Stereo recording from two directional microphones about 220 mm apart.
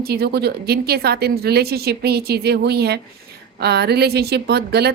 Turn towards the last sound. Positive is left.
turn(degrees=-50)  # may be behind; listen again after turning